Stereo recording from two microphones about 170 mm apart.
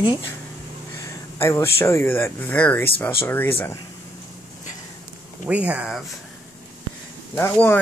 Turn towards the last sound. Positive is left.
turn(degrees=10)  # may be behind; listen again after turning